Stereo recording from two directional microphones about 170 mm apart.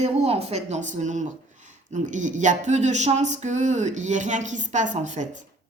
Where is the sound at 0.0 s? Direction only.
40° right (ahead or behind).